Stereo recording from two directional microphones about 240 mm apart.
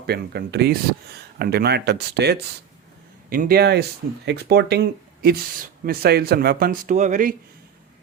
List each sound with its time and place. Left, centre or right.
0.0 s speech: right